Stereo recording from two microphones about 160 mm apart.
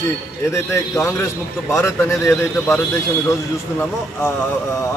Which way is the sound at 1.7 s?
15° left (ahead or behind).